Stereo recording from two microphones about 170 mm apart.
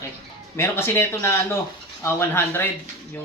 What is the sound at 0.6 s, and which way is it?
Speech, 15° left (ahead or behind).